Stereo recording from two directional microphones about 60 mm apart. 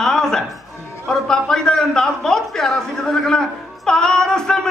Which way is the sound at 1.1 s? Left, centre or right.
Centre.